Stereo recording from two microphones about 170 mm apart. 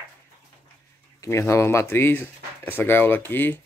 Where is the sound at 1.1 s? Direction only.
15° left (ahead or behind).